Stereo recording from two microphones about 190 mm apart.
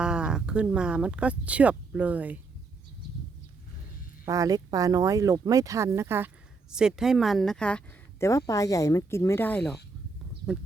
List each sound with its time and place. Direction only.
0.0 s speech: 5° right (ahead or behind)
4.3 s speech: 20° right (ahead or behind); by 7.8 s 5° left (ahead or behind)
8.2 s speech: 15° left (ahead or behind)